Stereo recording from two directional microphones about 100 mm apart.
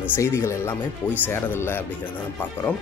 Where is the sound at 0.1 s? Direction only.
30° left (ahead or behind).